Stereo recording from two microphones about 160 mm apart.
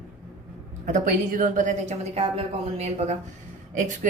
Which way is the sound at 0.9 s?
55° right (ahead or behind).